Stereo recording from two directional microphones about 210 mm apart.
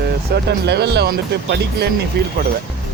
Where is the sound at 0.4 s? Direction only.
50° right (ahead or behind).